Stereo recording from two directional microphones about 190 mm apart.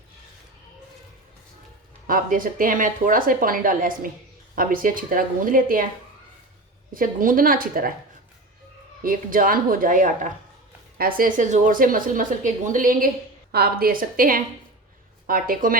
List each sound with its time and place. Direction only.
2.0 s a woman's voice: 45° right (ahead or behind)
6.9 s a woman's voice: 45° right (ahead or behind)
9.0 s a woman's voice: 45° right (ahead or behind)